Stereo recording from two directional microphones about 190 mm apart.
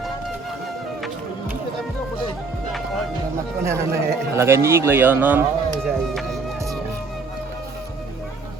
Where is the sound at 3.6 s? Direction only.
15° right (ahead or behind).